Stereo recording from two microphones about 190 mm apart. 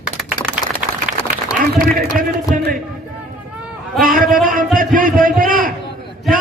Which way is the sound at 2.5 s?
45° right (ahead or behind).